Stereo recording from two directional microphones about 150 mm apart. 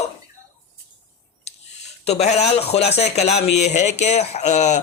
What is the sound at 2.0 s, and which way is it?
Speech, 45° left (ahead or behind).